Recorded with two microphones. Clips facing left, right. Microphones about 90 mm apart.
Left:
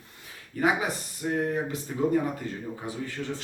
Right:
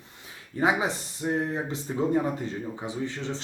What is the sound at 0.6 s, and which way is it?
Speech, 25° right (ahead or behind).